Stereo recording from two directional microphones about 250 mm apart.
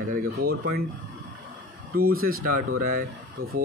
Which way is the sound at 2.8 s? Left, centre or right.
Right.